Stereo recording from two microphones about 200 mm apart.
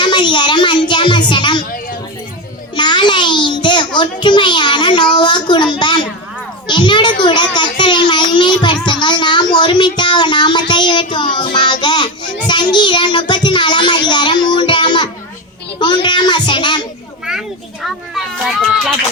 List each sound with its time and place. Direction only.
0.0 s a sound: 25° left (ahead or behind)
1.3 s a woman's voice: 25° left (ahead or behind)
2.7 s a sound: 20° left (ahead or behind)
5.1 s a child's voice: 20° left (ahead or behind)
12.5 s child singing: 20° left (ahead or behind)
17.8 s children playing: centre (ahead or behind)